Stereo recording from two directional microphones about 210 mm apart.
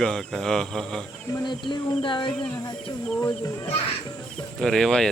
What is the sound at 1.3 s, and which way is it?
A child's voice, 20° left (ahead or behind).